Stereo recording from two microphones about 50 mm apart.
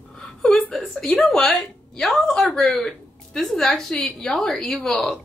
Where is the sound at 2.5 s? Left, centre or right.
Centre.